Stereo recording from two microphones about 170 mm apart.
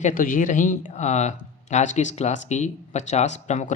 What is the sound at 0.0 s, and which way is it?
Speech, 55° left (ahead or behind).